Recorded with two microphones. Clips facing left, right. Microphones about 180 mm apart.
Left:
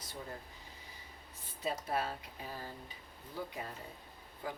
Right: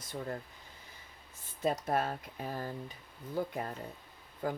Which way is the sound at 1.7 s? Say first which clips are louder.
Right 4 dB; 50° right (ahead or behind).